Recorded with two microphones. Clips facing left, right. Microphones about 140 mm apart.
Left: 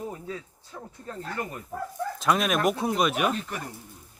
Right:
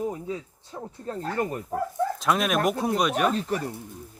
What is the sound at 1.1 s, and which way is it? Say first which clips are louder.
Speech: right 5 dB; 30° right (ahead or behind).